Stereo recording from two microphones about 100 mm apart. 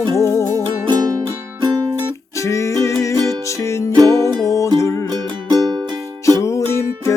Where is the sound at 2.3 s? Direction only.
30° left (ahead or behind).